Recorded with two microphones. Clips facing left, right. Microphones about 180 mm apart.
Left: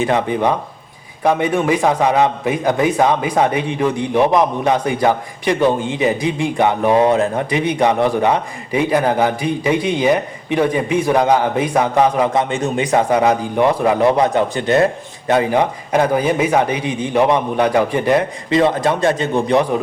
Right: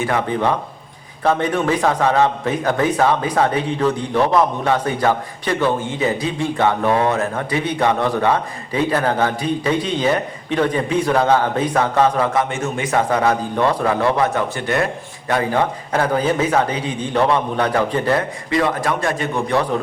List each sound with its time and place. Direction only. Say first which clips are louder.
0.0 s a man's voice: left 3 dB; 15° left (ahead or behind)